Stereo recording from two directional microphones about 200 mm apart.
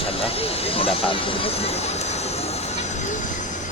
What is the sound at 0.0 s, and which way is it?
Speech, 30° left (ahead or behind).